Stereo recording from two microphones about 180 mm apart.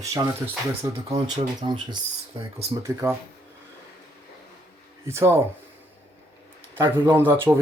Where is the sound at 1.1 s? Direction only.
25° right (ahead or behind).